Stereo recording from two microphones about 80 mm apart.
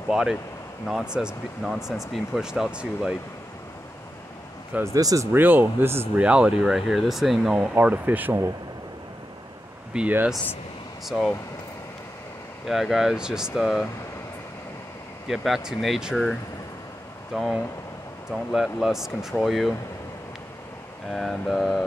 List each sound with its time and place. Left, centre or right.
0.1 s speech: centre
4.8 s speech: right
5.3 s speech: right
6.1 s speech: centre
7.5 s speech: centre
9.9 s speech: centre
11.1 s speech: centre
12.6 s speech: centre
15.2 s speech: centre
17.3 s speech: centre
21.1 s speech: centre